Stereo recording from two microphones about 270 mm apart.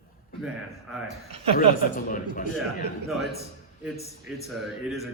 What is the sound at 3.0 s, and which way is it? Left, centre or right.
A man's voice, centre.